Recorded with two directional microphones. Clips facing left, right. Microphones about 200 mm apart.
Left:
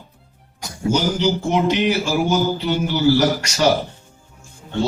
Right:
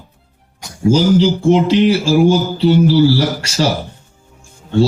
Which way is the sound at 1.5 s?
30° right (ahead or behind).